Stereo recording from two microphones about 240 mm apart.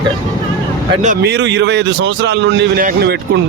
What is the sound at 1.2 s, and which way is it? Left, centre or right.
A man's voice, right.